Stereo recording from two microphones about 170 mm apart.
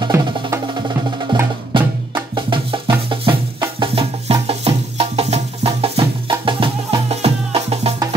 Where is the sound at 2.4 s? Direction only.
30° right (ahead or behind).